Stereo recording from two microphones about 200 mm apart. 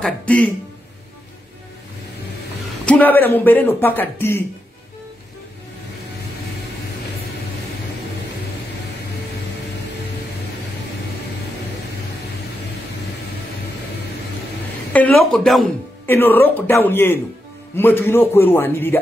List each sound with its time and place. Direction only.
0.0 s a woman's voice: 5° left (ahead or behind)
2.8 s speech: 5° left (ahead or behind)
14.9 s a woman's voice: 5° left (ahead or behind)